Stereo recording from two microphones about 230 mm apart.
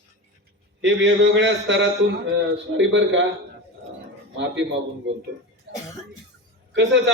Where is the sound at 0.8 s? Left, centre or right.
Right.